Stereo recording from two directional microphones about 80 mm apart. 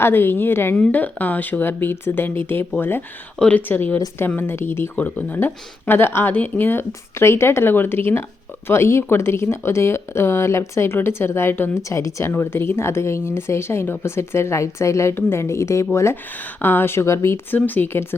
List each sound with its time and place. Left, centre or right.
0.0 s speech: left
3.3 s speech: centre
3.7 s speech: left
11.8 s speech: left
12.3 s speech: left
17.5 s speech: left